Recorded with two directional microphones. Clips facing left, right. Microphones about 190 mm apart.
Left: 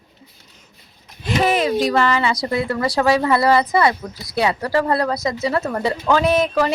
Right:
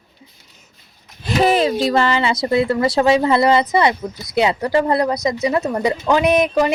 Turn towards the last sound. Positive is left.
turn(degrees=-15)  # may be behind; listen again after turning